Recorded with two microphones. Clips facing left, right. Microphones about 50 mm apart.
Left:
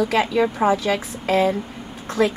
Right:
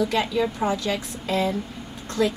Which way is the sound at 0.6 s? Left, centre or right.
Left.